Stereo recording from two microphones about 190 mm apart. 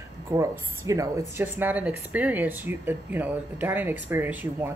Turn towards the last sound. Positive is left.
turn(degrees=-10)  # may be behind; listen again after turning